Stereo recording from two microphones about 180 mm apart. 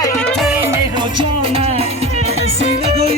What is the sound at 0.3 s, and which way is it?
Music, centre (ahead or behind).